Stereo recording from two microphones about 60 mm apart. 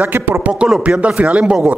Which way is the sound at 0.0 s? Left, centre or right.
Right.